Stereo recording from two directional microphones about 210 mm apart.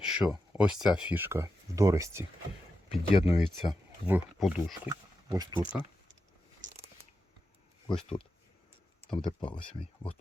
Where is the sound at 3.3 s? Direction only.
5° right (ahead or behind).